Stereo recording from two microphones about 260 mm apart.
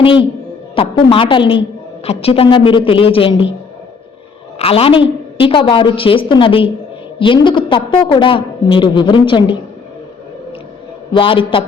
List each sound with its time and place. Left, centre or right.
0.0 s a man's voice: left
4.5 s a man's voice: left
11.1 s a man's voice: centre